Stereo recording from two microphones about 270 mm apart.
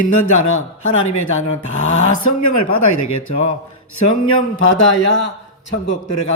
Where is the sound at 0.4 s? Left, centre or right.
Left.